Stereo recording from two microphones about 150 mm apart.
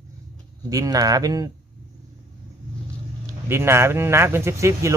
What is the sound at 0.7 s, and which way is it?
Speech, 25° right (ahead or behind).